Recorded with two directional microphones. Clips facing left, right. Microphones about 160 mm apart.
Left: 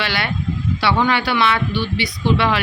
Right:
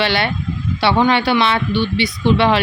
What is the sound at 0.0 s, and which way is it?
Speech, 25° right (ahead or behind).